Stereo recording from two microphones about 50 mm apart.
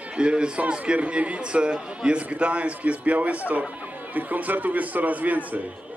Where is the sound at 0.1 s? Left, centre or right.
Right.